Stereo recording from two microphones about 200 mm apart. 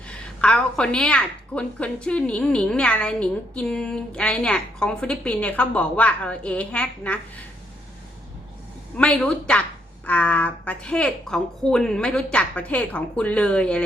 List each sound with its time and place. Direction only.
0.1 s a woman's voice: 5° left (ahead or behind)
9.0 s a woman's voice: 5° left (ahead or behind)